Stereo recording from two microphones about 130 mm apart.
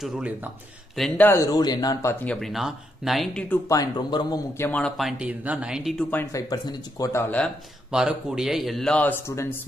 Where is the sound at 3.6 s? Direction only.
30° left (ahead or behind).